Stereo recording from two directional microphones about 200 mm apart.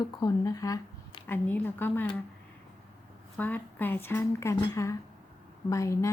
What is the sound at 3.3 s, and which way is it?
Speech, 10° left (ahead or behind).